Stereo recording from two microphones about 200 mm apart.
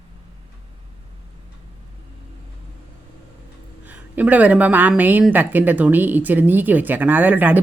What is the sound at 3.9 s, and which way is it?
Speech, 10° right (ahead or behind).